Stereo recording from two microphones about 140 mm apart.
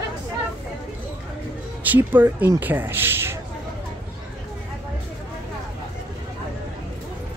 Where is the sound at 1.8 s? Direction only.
10° right (ahead or behind).